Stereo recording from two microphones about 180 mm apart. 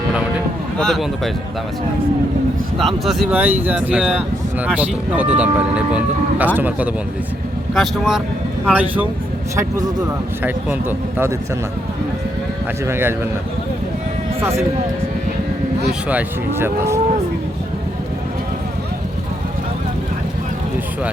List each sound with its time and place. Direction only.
0.1 s speech: 5° right (ahead or behind)
2.7 s speech: centre (ahead or behind)
9.6 s speech: 20° right (ahead or behind)
12.9 s speech: 15° right (ahead or behind)
15.9 s speech: 10° right (ahead or behind)